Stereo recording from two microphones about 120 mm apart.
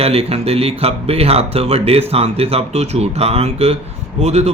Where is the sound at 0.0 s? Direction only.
55° right (ahead or behind).